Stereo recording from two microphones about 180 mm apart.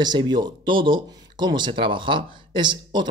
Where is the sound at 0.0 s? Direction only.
25° right (ahead or behind).